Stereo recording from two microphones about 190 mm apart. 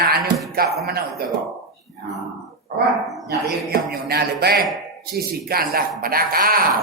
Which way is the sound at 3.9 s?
55° right (ahead or behind).